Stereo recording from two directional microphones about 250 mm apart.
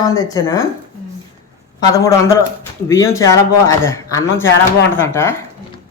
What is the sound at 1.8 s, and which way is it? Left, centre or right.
A man's voice, centre.